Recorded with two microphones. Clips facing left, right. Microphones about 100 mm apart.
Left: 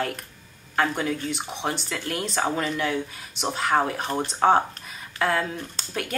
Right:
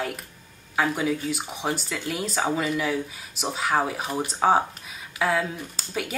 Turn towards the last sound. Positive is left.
turn(degrees=-5)  # may be behind; listen again after turning